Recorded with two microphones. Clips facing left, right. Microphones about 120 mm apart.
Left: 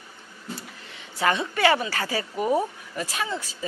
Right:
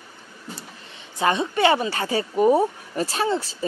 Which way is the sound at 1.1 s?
25° right (ahead or behind).